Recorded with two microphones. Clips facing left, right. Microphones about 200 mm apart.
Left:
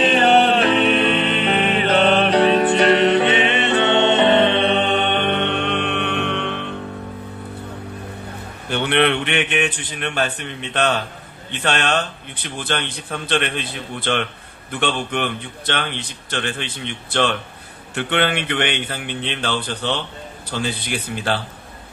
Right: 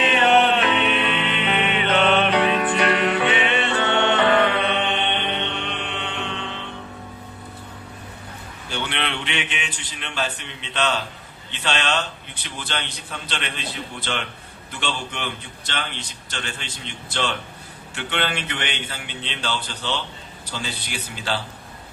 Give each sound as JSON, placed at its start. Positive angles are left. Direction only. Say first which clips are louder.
{"t": 0.0, "sound": "music", "louder": "left 3 dB", "side_deg": 35}
{"t": 8.7, "sound": "a man's voice", "louder": "left 10 dB", "side_deg": 60}